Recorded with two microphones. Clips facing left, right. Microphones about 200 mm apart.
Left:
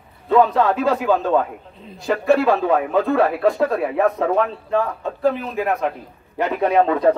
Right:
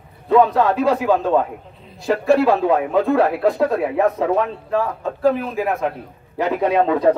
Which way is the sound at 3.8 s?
20° right (ahead or behind).